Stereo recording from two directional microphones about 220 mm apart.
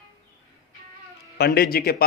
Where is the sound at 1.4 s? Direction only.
45° left (ahead or behind).